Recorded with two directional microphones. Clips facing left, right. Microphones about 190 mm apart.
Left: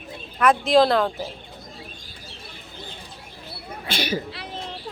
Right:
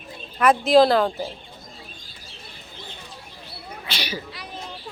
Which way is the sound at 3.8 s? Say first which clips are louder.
Left 6 dB; 50° left (ahead or behind).